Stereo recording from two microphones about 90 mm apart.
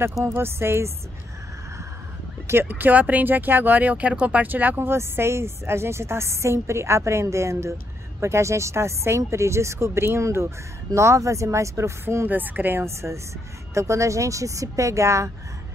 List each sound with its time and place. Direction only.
0.3 s speech: 25° right (ahead or behind)
2.4 s speech: 25° right (ahead or behind)
12.3 s speech: 20° right (ahead or behind)